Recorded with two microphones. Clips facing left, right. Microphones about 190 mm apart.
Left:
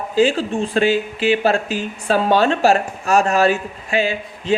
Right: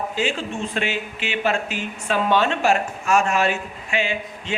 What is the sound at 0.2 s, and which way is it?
Speech, 35° left (ahead or behind).